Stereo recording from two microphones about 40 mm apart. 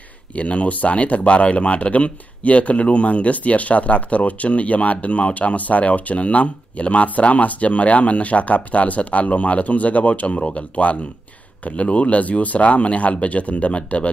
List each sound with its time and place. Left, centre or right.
0.4 s speech: left